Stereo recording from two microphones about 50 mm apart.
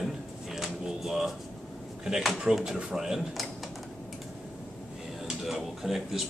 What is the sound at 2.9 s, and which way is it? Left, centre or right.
Speech, centre.